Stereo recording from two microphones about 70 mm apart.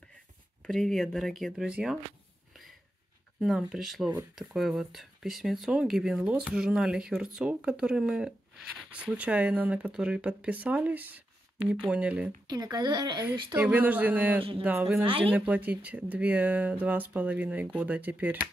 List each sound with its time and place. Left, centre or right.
0.7 s speech: centre
1.7 s speech: centre
3.3 s speech: centre
12.4 s speech: right
13.6 s speech: right